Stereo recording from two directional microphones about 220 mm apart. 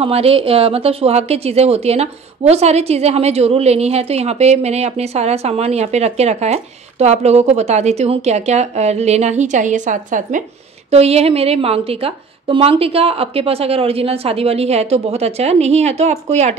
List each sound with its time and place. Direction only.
0.0 s a woman's voice: 25° right (ahead or behind)